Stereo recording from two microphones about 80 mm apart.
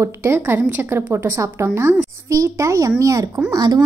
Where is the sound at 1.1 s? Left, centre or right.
Right.